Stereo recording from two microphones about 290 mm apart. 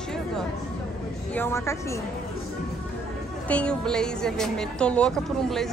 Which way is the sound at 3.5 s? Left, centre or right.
Centre.